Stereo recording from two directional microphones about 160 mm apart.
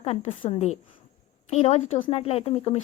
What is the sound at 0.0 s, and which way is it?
Speech, 35° left (ahead or behind).